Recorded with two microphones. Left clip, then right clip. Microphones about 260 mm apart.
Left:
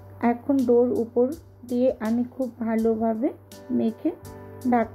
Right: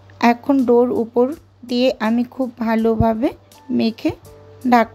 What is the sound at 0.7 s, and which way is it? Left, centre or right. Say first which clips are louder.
A woman's voice: right 5 dB; right.